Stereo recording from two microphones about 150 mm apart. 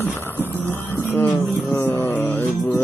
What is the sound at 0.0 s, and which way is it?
Music, 15° left (ahead or behind).